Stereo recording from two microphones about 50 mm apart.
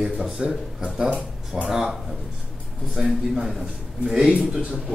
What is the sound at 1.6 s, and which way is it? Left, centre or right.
Speech, centre.